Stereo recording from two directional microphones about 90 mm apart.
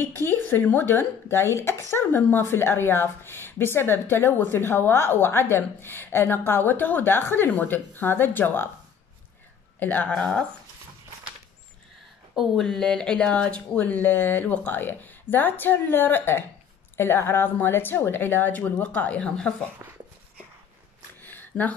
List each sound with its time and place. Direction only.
0.2 s speech: 25° left (ahead or behind)
9.8 s speech: 20° left (ahead or behind)
12.4 s speech: 5° left (ahead or behind)
21.2 s a sound: 20° left (ahead or behind)